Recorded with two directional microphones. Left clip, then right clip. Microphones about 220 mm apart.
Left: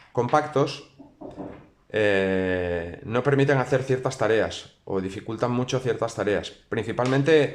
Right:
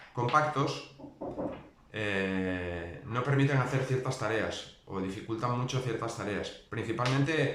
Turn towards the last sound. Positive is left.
turn(degrees=45)  # may be behind; listen again after turning